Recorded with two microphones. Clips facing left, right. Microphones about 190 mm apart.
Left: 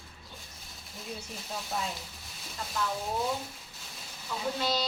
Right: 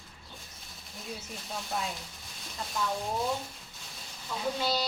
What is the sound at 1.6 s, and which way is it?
Speech, centre (ahead or behind).